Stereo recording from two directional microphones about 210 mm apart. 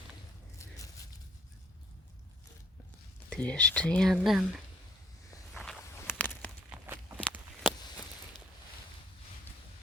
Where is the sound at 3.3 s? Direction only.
5° left (ahead or behind).